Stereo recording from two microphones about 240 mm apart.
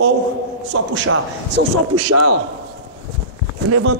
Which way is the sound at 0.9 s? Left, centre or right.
Right.